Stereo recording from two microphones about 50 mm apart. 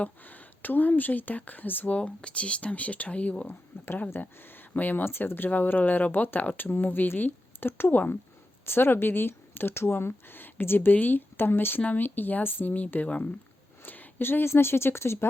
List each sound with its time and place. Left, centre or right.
0.0 s speech: left
2.0 s speech: left
4.4 s speech: left
8.6 s speech: left